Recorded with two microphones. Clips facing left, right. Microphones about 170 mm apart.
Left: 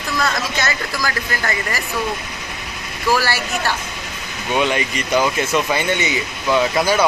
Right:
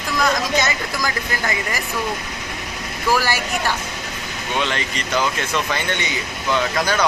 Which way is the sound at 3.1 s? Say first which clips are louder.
Left 1 dB; 15° right (ahead or behind).